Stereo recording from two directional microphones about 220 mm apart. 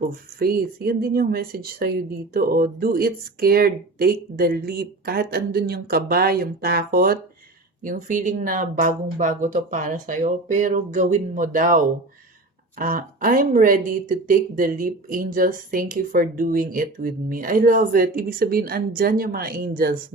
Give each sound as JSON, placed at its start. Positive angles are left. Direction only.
{"t": 0.0, "sound": "speech", "side_deg": -45}
{"t": 12.8, "sound": "speech", "side_deg": -40}